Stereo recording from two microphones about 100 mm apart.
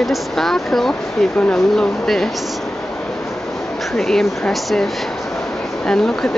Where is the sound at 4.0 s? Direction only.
5° left (ahead or behind).